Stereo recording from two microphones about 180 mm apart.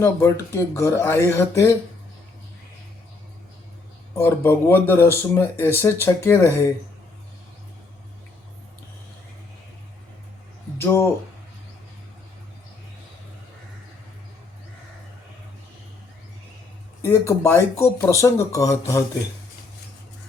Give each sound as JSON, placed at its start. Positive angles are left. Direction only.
{"t": 0.0, "sound": "speech", "side_deg": 15}
{"t": 4.1, "sound": "speech", "side_deg": 15}
{"t": 10.8, "sound": "speech", "side_deg": 15}
{"t": 17.0, "sound": "speech", "side_deg": 15}